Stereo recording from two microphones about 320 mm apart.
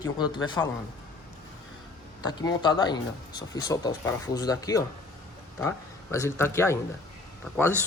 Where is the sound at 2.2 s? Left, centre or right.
Centre.